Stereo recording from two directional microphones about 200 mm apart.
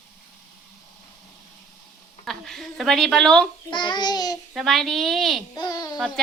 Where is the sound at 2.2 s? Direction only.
Centre (ahead or behind).